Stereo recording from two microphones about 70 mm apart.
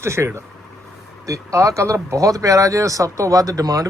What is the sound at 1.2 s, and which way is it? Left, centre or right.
Speech, right.